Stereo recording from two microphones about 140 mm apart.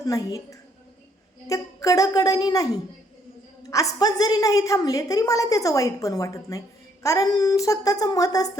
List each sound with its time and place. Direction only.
0.0 s a woman's voice: 25° left (ahead or behind)
1.5 s a woman's voice: 25° left (ahead or behind)